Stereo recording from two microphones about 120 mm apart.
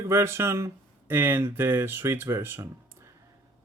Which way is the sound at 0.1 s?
20° right (ahead or behind).